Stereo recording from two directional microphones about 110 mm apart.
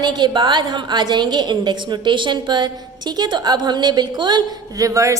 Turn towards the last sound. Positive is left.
turn(degrees=-30)  # may be behind; listen again after turning